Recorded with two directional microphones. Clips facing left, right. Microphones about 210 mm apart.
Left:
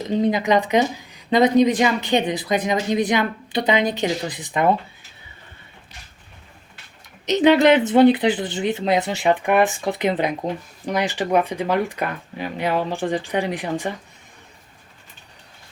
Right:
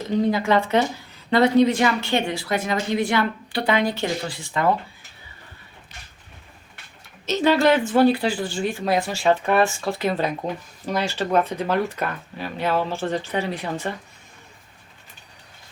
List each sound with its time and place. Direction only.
0.0 s speech: 20° left (ahead or behind)
7.3 s speech: 20° left (ahead or behind)